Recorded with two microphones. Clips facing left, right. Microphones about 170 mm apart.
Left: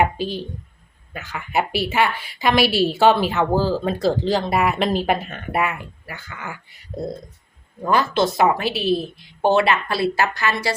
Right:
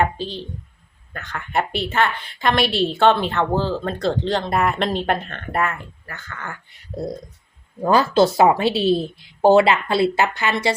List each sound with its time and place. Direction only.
0.0 s a woman's voice: 10° left (ahead or behind)
7.8 s a woman's voice: 30° right (ahead or behind)